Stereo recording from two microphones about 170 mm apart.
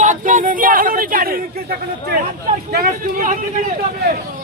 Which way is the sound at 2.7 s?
55° right (ahead or behind).